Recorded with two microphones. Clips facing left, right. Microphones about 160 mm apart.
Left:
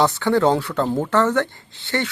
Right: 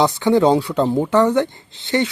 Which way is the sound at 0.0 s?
15° right (ahead or behind).